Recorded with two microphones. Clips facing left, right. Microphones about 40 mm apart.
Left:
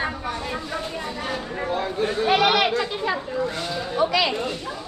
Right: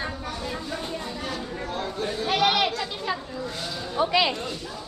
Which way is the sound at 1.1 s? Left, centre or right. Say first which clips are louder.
Left 3 dB; left.